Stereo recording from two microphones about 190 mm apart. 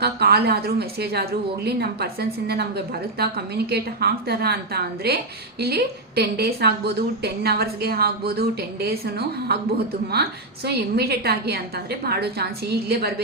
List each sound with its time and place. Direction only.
0.0 s a woman's voice: 55° right (ahead or behind)